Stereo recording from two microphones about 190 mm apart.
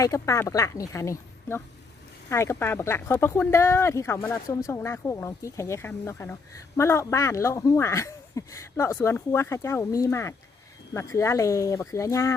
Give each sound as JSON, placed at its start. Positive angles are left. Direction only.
{"t": 0.0, "sound": "speech", "side_deg": 15}